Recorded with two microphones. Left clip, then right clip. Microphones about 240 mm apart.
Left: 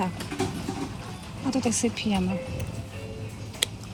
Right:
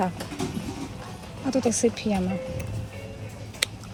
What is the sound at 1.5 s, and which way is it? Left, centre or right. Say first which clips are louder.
Speech: right 4 dB; centre.